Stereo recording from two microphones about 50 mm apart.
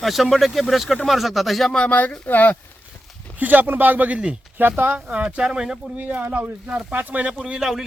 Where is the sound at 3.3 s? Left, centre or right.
Right.